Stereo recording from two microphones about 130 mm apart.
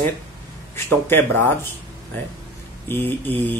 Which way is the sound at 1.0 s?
15° left (ahead or behind).